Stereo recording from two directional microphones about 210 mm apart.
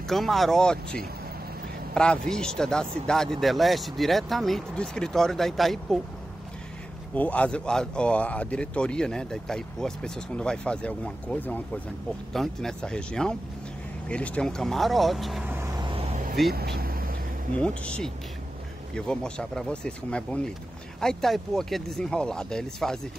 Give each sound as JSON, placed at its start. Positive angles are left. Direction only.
{"t": 0.1, "sound": "speech", "side_deg": 0}
{"t": 2.0, "sound": "speech", "side_deg": 5}
{"t": 7.2, "sound": "speech", "side_deg": 5}
{"t": 16.5, "sound": "vehicle", "side_deg": -50}
{"t": 17.6, "sound": "speech", "side_deg": 5}